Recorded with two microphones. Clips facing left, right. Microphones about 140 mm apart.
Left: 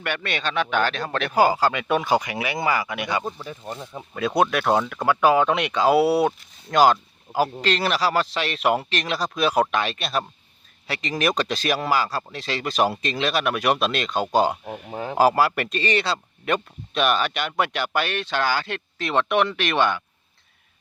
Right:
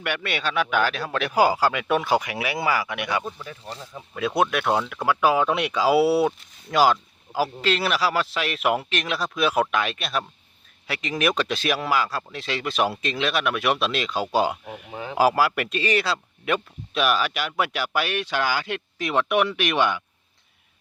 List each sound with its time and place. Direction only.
0.0 s speech: 10° right (ahead or behind)
3.3 s speech: 20° left (ahead or behind)
4.4 s speech: centre (ahead or behind)
14.8 s speech: 40° left (ahead or behind)
15.2 s speech: 5° right (ahead or behind)